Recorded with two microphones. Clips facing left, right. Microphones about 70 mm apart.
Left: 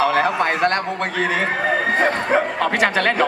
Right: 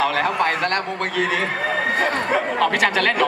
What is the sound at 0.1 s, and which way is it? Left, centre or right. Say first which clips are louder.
A man's voice: left 2 dB; left.